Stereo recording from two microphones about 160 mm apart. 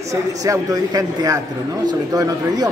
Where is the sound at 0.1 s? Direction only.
20° right (ahead or behind).